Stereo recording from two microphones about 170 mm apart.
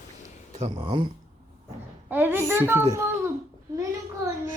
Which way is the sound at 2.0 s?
10° right (ahead or behind).